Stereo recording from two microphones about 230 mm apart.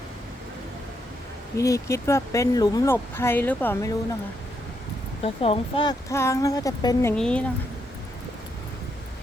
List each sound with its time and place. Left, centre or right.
1.5 s speech: centre
5.2 s speech: left
7.2 s speech: centre